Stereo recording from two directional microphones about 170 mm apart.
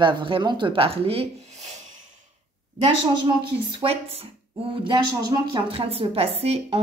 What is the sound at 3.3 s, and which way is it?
Speech, 30° right (ahead or behind).